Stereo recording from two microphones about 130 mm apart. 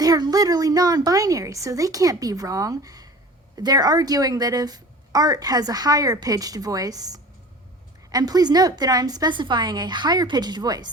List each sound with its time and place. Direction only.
0.0 s a woman's voice: 30° right (ahead or behind)